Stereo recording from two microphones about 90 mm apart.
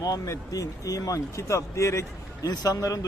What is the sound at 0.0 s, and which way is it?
Speech, 40° left (ahead or behind).